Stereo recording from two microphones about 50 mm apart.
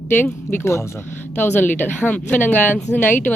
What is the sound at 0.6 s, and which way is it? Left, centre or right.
Speech, left.